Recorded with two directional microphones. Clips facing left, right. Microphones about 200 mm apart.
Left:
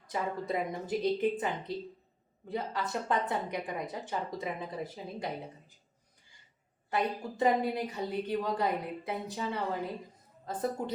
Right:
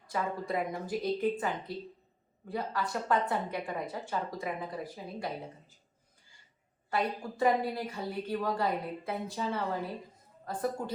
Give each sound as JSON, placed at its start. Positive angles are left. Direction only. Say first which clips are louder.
{"t": 0.1, "sound": "speech", "louder": "even", "side_deg": 20}
{"t": 6.9, "sound": "speech", "louder": "even", "side_deg": 20}